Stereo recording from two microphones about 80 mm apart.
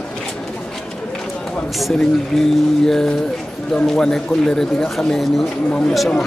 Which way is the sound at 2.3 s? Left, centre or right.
Centre.